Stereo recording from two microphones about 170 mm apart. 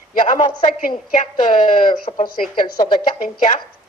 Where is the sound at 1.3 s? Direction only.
30° left (ahead or behind).